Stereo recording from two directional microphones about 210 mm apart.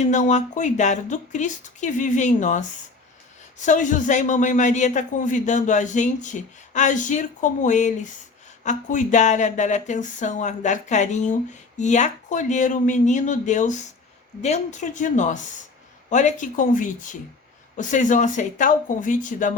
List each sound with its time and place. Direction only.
0.0 s a man's voice: 35° left (ahead or behind)